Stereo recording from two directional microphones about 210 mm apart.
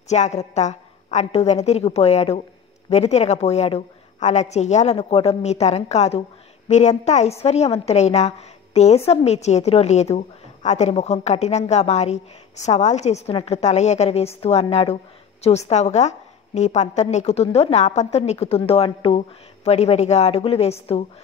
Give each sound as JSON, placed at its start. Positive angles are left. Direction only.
{"t": 0.1, "sound": "a woman's voice", "side_deg": 30}